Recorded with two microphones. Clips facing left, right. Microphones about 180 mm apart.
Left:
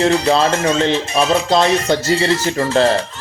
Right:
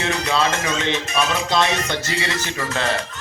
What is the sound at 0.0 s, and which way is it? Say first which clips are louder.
Speech: left 7 dB; 30° left (ahead or behind).